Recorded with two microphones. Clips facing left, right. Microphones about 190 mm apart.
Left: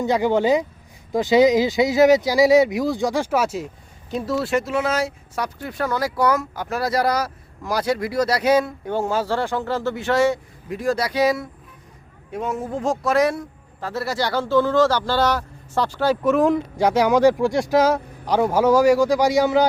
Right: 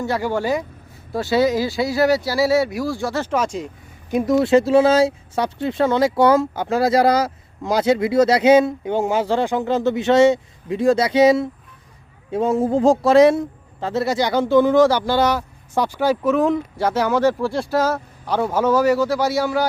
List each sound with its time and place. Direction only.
0.0 s speech: 20° left (ahead or behind)
4.1 s speech: 15° right (ahead or behind)
16.2 s speech: centre (ahead or behind)
16.7 s speech: 15° left (ahead or behind)